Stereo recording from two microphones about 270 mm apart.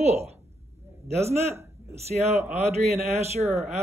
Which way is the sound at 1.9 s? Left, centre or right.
Right.